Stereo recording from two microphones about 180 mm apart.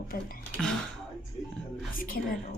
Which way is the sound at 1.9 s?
50° left (ahead or behind).